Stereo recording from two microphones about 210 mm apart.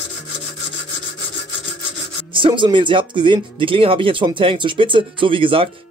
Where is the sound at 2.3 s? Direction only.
25° right (ahead or behind).